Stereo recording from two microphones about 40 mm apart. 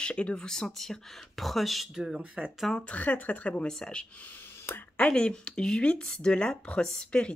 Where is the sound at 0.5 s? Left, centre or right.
Centre.